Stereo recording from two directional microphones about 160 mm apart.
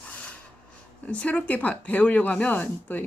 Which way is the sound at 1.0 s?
10° left (ahead or behind).